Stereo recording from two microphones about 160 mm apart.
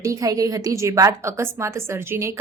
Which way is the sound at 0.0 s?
20° right (ahead or behind).